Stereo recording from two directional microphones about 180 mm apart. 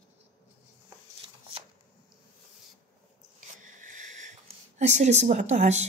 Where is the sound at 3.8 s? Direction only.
45° right (ahead or behind).